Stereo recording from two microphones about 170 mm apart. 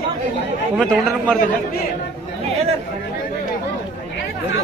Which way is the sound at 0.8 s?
5° left (ahead or behind).